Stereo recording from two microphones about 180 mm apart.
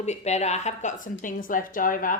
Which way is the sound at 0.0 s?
40° left (ahead or behind).